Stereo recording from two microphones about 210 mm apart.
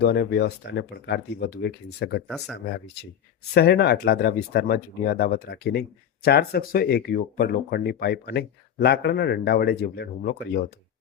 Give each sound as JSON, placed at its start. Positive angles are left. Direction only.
{"t": 0.0, "sound": "speech", "side_deg": 50}
{"t": 2.2, "sound": "speech", "side_deg": -5}
{"t": 2.6, "sound": "speech", "side_deg": 50}